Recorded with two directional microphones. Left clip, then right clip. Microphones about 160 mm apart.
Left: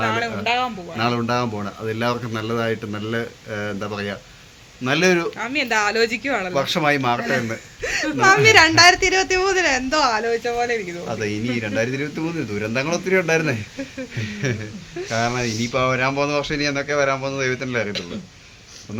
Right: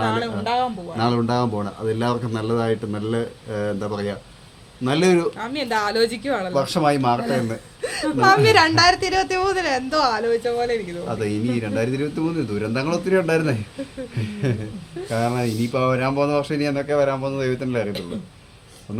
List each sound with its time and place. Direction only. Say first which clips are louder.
0.0 s speech: left 1 dB; 15° left (ahead or behind)
0.4 s a sound: even; 15° left (ahead or behind)
0.9 s a man's voice: even; 15° right (ahead or behind)
5.4 s speech: left 3 dB; 15° left (ahead or behind)
6.6 s speech: even; centre (ahead or behind)
7.8 s a woman's voice: left 1 dB; 20° left (ahead or behind)
11.2 s speech: even; 5° right (ahead or behind)